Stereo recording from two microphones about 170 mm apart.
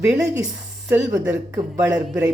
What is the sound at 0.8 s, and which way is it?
Speech, 15° right (ahead or behind).